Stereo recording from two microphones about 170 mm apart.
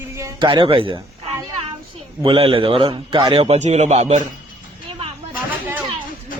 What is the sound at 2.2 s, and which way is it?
A man's voice, 30° right (ahead or behind).